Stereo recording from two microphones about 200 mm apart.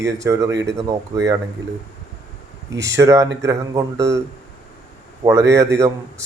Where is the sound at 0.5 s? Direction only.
60° right (ahead or behind).